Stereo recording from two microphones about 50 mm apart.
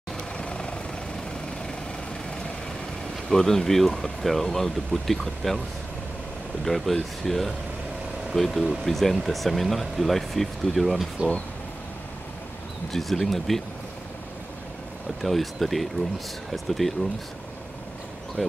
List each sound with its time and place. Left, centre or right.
0.4 s vehicle: centre
3.3 s speech: centre
6.6 s speech: centre
12.9 s speech: centre
15.2 s speech: centre
18.4 s speech: centre